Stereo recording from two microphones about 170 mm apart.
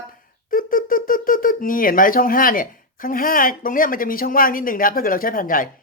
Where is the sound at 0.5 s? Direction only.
55° left (ahead or behind).